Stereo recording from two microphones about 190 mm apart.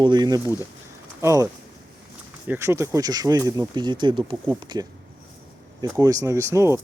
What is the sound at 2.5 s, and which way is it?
Speech, 15° right (ahead or behind).